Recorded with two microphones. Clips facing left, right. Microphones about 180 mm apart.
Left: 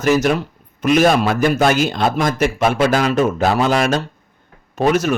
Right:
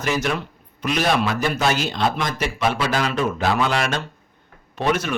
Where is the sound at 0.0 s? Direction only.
45° left (ahead or behind).